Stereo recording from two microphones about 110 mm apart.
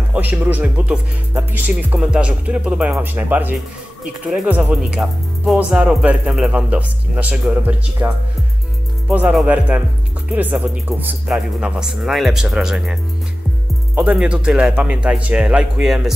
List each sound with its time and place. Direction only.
0.1 s speech: 15° right (ahead or behind)
8.0 s music: 20° right (ahead or behind)
9.1 s speech: 5° right (ahead or behind)